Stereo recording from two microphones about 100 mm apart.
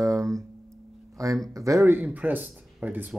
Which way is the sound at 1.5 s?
30° right (ahead or behind).